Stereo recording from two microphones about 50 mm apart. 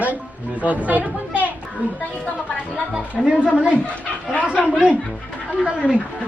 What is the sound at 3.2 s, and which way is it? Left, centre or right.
Speech, right.